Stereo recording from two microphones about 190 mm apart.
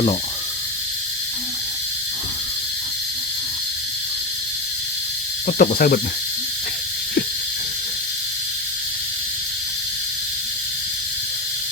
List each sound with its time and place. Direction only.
5.5 s speech: 50° left (ahead or behind)